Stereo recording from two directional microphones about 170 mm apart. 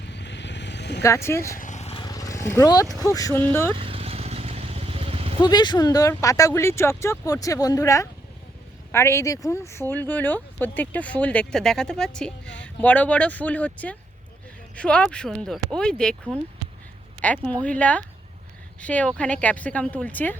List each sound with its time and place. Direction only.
0.0 s vehicle: 90° left
1.0 s speech: 15° left (ahead or behind)
1.5 s vehicle: 45° left (ahead or behind)
2.0 s vehicle: 20° left (ahead or behind)
2.9 s speech: 20° left (ahead or behind)
3.8 s vehicle: 35° right (ahead or behind)
5.4 s speech: 25° left (ahead or behind); by 16.1 s 5° left (ahead or behind)
17.2 s speech: 5° left (ahead or behind)